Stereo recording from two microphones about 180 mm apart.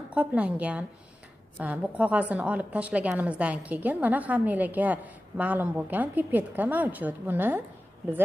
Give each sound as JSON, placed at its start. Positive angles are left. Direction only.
{"t": 0.1, "sound": "a woman's voice", "side_deg": -5}